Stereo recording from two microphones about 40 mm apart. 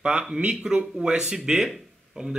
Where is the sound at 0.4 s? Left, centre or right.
Right.